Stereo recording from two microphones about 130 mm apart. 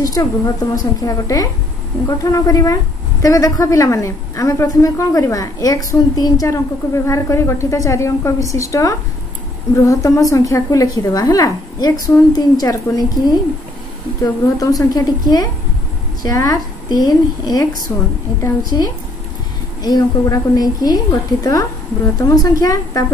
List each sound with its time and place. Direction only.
0.0 s a woman's voice: 25° left (ahead or behind)